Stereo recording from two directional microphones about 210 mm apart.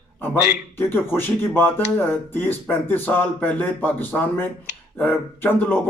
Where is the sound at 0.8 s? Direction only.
10° left (ahead or behind).